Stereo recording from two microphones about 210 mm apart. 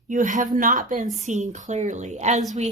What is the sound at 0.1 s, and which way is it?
Speech, 35° right (ahead or behind).